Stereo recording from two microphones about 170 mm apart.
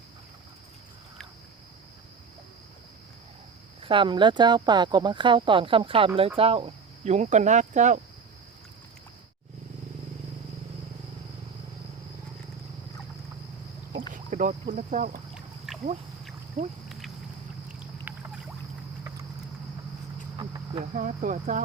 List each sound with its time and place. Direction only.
3.8 s speech: 30° right (ahead or behind)
14.1 s speech: 50° right (ahead or behind)
15.4 s a sound: 5° right (ahead or behind)
18.1 s rowboat: 10° right (ahead or behind)
20.9 s speech: 50° right (ahead or behind)